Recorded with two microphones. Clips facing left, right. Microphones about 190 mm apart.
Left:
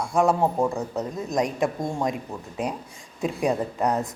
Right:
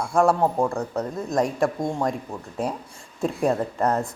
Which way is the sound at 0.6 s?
Centre (ahead or behind).